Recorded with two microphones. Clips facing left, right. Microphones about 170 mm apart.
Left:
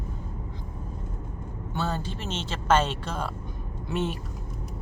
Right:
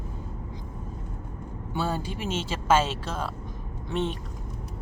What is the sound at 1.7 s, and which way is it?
Speech, 10° right (ahead or behind).